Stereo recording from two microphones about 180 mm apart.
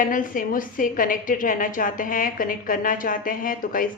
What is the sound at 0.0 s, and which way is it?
A woman's voice, 50° left (ahead or behind).